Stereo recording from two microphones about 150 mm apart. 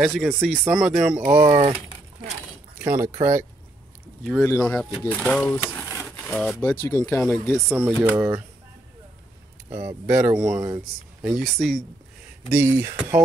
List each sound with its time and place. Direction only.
0.0 s speech: centre (ahead or behind)
1.2 s speech: 20° right (ahead or behind)
1.5 s speech: 35° right (ahead or behind)
2.8 s speech: 15° right (ahead or behind)
4.4 s speech: 15° left (ahead or behind)
8.0 s speech: 15° right (ahead or behind)
9.8 s speech: 10° right (ahead or behind)
12.4 s speech: 15° right (ahead or behind)